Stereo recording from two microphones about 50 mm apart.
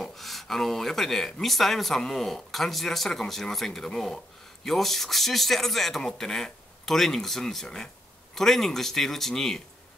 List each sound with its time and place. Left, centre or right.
0.0 s speech: centre